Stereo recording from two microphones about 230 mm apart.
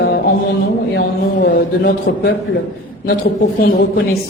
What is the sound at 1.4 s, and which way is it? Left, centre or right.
A woman's voice, left.